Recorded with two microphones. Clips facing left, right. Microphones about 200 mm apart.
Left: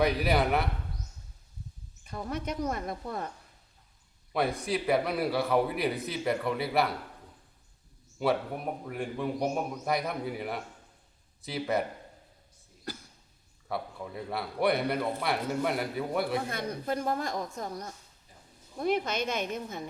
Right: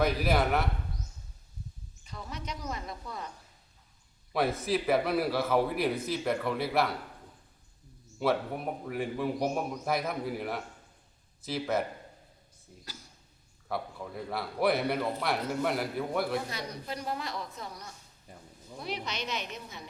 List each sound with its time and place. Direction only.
0.0 s a man's voice: centre (ahead or behind)
2.0 s a woman's voice: 55° left (ahead or behind)
4.3 s a man's voice: centre (ahead or behind)
8.2 s a man's voice: centre (ahead or behind)
12.9 s a sound: 55° left (ahead or behind)
13.7 s a man's voice: centre (ahead or behind)
16.5 s a woman's voice: 55° left (ahead or behind)